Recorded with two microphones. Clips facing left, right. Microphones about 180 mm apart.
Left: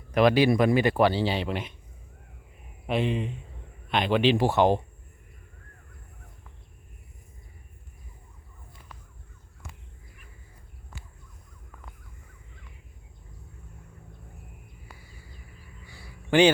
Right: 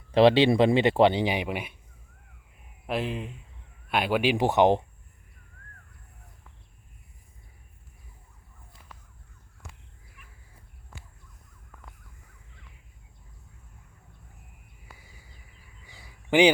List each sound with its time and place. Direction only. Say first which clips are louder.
0.1 s speech: right 2 dB; 30° right (ahead or behind); by 1.7 s 10° right (ahead or behind)
2.8 s speech: left 3 dB; centre (ahead or behind); by 4.8 s 20° right (ahead or behind)
15.9 s a sound: even; 15° right (ahead or behind)